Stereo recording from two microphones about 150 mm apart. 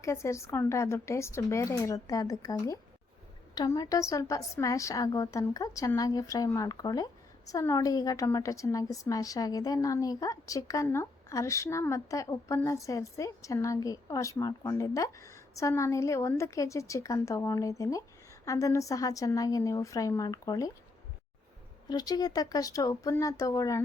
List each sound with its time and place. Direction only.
0.0 s a woman's voice: 20° left (ahead or behind)
21.8 s a woman's voice: 25° left (ahead or behind)